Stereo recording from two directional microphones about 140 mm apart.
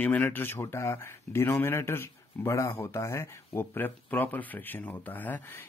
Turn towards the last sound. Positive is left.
turn(degrees=15)  # may be behind; listen again after turning